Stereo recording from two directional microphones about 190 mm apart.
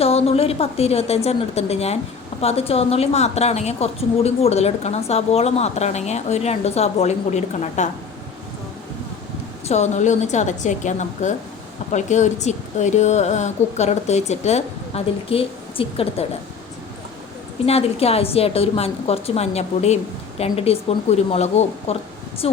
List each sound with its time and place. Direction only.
0.0 s a woman's voice: 30° left (ahead or behind)
9.6 s a woman's voice: 35° left (ahead or behind)
17.7 s a woman's voice: 30° left (ahead or behind)